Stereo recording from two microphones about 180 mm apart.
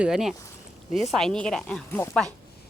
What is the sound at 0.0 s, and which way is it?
A woman's voice, centre (ahead or behind).